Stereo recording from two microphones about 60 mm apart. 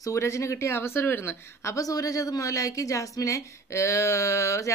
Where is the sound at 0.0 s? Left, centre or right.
Left.